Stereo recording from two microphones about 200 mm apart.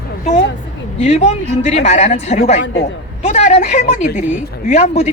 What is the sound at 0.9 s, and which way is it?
Speech, 30° left (ahead or behind).